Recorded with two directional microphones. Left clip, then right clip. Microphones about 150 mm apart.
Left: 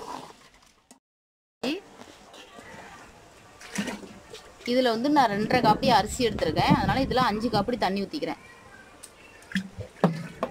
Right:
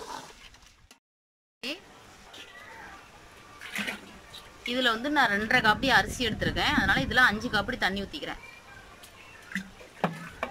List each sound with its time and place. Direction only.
3.7 s toilet flush: 45° left (ahead or behind)
4.6 s a woman's voice: 35° left (ahead or behind)
9.5 s music: 45° left (ahead or behind)